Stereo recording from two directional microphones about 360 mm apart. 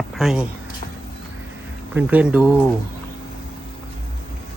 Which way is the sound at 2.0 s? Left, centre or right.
Centre.